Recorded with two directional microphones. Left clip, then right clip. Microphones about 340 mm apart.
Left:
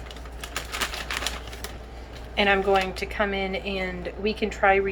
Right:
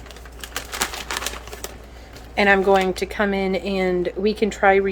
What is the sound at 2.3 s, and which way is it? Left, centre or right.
Speech, centre.